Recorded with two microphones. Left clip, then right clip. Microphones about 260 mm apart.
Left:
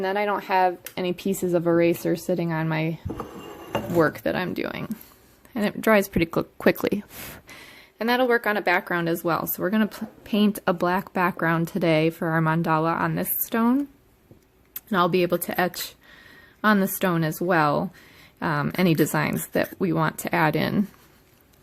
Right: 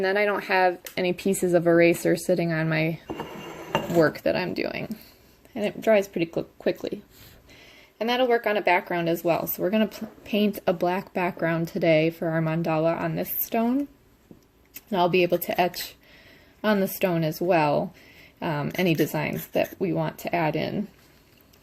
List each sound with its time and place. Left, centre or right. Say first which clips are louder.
0.0 s speech: right 1 dB; centre
3.7 s dishes: even; centre
5.5 s speech: left 1 dB; left
14.8 s speech: even; left